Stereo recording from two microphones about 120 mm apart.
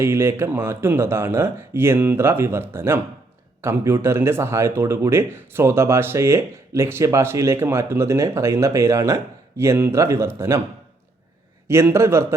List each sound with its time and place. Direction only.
0.0 s speech: 20° right (ahead or behind)
11.7 s speech: 20° right (ahead or behind)